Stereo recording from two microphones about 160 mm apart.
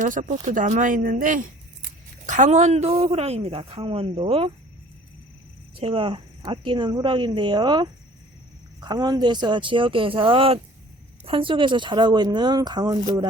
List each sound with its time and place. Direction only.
0.0 s a woman's voice: 55° right (ahead or behind); by 4.5 s 35° right (ahead or behind)
5.7 s a woman's voice: 35° right (ahead or behind)